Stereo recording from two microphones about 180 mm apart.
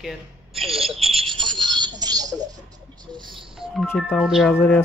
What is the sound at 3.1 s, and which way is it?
Music, 25° right (ahead or behind).